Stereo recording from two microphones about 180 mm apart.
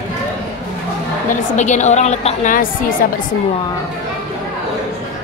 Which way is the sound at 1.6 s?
40° left (ahead or behind).